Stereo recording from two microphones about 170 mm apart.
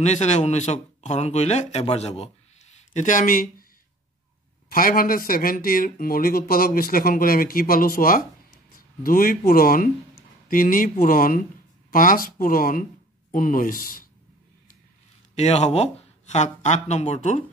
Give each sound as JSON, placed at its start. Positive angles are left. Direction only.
{"t": 0.0, "sound": "speech", "side_deg": 40}
{"t": 4.6, "sound": "speech", "side_deg": 55}
{"t": 15.3, "sound": "speech", "side_deg": 40}